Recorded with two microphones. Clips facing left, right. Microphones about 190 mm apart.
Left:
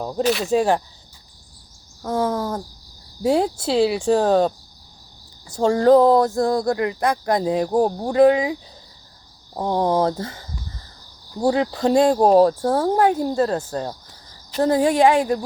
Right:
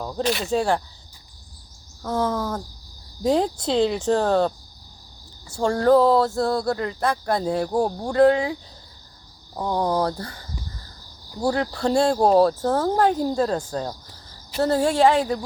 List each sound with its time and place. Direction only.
0.2 s speech: centre (ahead or behind)
0.5 s speech: 15° left (ahead or behind)
2.0 s speech: 10° left (ahead or behind)
9.6 s speech: 20° left (ahead or behind)
11.3 s speech: 20° left (ahead or behind)